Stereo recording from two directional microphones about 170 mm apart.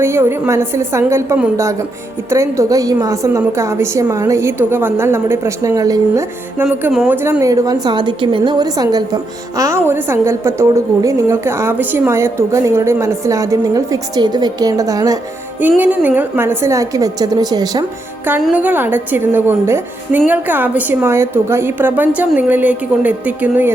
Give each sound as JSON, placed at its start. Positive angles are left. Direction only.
{"t": 0.0, "sound": "a woman's voice", "side_deg": -15}
{"t": 15.8, "sound": "a woman's voice", "side_deg": -10}
{"t": 18.4, "sound": "a woman's voice", "side_deg": -10}